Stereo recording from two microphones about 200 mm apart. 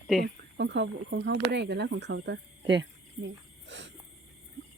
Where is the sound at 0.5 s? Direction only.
60° right (ahead or behind).